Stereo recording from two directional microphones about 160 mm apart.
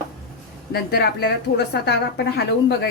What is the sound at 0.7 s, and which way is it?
A woman's voice, 85° left.